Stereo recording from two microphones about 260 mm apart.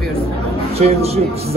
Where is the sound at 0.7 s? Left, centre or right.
Right.